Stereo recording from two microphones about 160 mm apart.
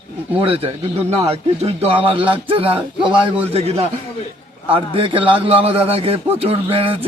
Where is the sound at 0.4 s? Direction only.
35° right (ahead or behind).